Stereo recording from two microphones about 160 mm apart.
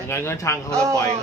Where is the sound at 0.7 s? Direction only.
20° right (ahead or behind).